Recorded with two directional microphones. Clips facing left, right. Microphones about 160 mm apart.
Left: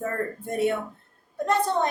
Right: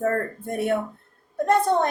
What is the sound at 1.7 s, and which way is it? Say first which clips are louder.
Speech: right 3 dB; 55° right (ahead or behind).